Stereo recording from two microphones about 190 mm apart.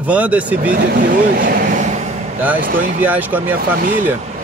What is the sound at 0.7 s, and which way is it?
Speech, 45° right (ahead or behind).